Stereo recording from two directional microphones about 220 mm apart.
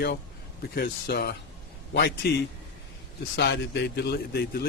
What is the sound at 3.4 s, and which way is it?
Speech, 50° left (ahead or behind).